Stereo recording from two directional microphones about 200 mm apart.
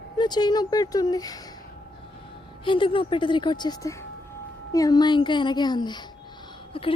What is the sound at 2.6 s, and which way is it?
A woman's voice, 25° left (ahead or behind).